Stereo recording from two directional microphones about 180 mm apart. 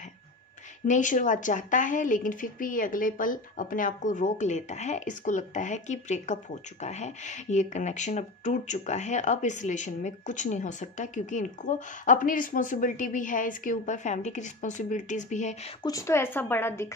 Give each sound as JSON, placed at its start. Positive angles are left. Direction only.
{"t": 0.8, "sound": "speech", "side_deg": 45}
{"t": 15.8, "sound": "speech", "side_deg": 20}